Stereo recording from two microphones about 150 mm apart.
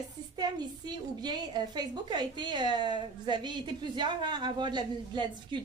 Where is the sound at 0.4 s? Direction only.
30° right (ahead or behind).